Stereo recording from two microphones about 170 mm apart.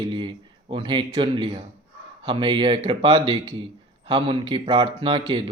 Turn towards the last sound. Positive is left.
turn(degrees=-30)  # may be behind; listen again after turning